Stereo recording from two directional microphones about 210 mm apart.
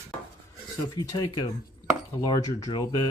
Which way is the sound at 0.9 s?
15° left (ahead or behind).